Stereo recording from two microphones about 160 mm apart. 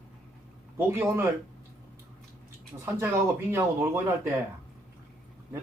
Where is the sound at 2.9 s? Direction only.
15° right (ahead or behind).